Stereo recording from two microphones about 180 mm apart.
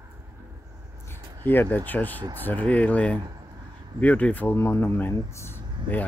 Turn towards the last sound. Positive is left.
turn(degrees=10)  # may be behind; listen again after turning